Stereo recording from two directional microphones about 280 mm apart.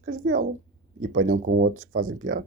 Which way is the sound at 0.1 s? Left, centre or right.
Right.